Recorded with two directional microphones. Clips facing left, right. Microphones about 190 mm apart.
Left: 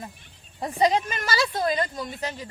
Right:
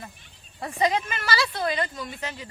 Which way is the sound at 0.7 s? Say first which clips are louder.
Left 2 dB; 35° left (ahead or behind).